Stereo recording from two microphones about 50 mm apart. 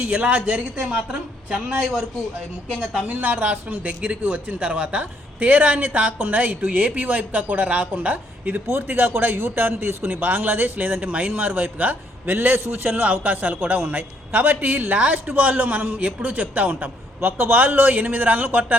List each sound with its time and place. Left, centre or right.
0.0 s speech: right; by 3.0 s centre
3.1 s speech: right